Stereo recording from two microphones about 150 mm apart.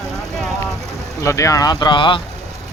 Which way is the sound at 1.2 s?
20° left (ahead or behind).